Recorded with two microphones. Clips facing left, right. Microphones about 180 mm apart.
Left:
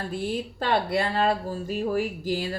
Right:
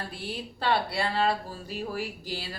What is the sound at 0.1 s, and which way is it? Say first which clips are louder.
A woman's voice: left 8 dB; 45° left (ahead or behind).